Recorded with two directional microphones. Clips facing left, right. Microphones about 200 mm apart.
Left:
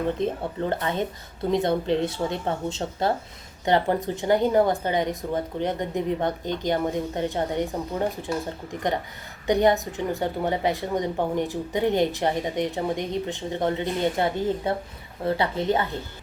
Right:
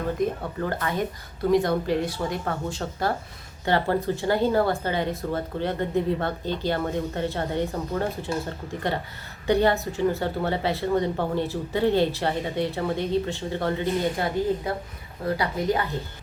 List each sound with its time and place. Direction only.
0.2 s speech: 25° left (ahead or behind)